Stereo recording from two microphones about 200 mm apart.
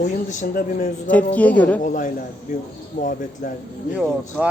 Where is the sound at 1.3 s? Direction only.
5° left (ahead or behind).